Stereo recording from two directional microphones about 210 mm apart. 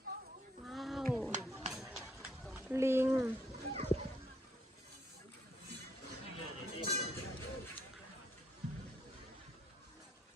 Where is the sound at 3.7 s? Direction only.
30° right (ahead or behind).